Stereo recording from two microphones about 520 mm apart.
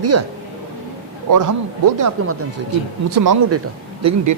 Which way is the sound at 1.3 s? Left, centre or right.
Right.